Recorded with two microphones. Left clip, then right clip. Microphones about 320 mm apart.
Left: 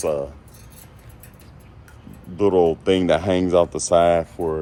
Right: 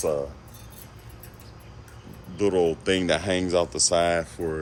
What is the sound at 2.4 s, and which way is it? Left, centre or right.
Speech, centre.